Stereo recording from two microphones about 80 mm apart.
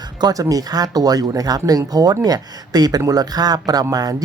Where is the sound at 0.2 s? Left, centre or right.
Right.